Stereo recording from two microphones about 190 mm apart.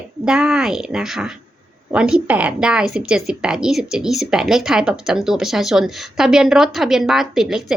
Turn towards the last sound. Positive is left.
turn(degrees=0)  # may be behind; listen again after turning